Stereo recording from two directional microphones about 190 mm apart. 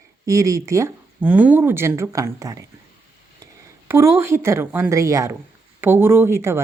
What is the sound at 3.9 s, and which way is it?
Speech, 15° right (ahead or behind).